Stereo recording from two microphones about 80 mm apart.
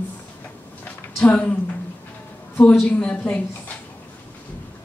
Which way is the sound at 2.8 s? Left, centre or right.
Centre.